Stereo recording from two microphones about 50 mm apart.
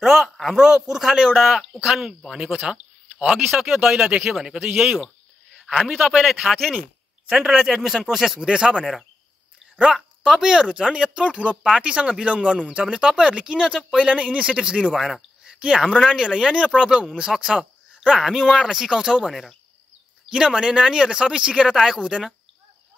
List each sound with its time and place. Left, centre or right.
0.0 s speech: centre
0.6 s speech: centre
1.4 s speech: centre
1.8 s a man's voice: centre
8.4 s speech: centre
10.3 s speech: centre
15.0 s a sound: centre
15.6 s speech: centre
21.7 s speech: centre